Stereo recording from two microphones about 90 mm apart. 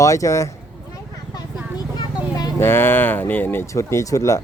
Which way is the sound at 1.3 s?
50° left (ahead or behind).